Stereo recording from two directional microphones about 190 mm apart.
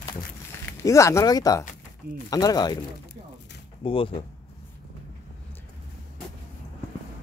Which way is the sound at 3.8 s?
30° left (ahead or behind).